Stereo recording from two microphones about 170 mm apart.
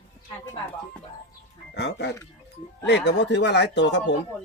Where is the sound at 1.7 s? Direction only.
85° left.